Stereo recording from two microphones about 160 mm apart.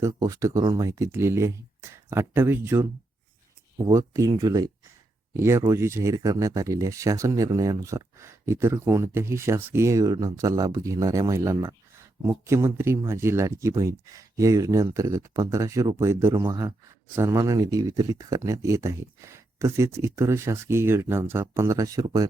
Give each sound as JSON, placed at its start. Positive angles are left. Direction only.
{"t": 0.0, "sound": "speech", "side_deg": -20}